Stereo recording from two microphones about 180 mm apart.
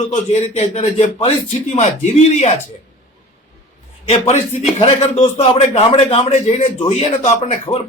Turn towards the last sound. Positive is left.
turn(degrees=35)  # may be behind; listen again after turning